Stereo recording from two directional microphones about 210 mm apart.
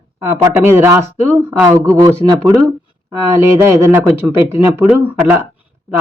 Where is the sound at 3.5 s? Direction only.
15° right (ahead or behind).